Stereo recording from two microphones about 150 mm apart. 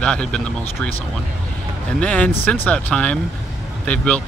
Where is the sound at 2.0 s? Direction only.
10° left (ahead or behind).